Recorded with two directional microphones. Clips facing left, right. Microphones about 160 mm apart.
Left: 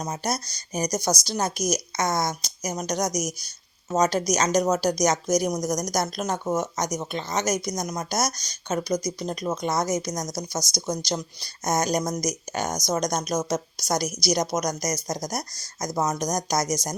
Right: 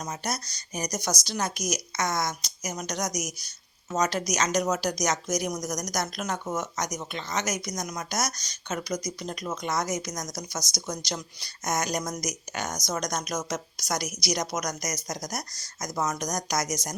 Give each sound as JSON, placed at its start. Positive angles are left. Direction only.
{"t": 0.0, "sound": "speech", "side_deg": 35}